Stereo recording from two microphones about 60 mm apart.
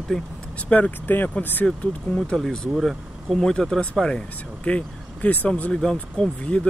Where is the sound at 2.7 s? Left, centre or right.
Centre.